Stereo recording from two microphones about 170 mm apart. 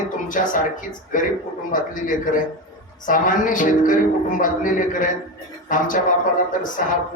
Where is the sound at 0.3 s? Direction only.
50° left (ahead or behind).